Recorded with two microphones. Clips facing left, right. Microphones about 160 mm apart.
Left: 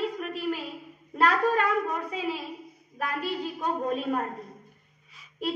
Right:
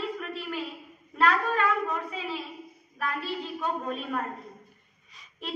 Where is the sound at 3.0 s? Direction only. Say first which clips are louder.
Left 2 dB; 40° left (ahead or behind).